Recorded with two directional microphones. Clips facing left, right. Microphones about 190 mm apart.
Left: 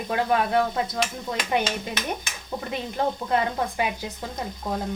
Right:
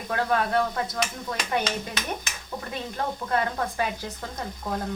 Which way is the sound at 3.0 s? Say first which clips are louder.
Left 5 dB; 25° left (ahead or behind).